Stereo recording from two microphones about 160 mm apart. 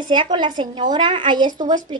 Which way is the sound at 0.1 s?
30° right (ahead or behind).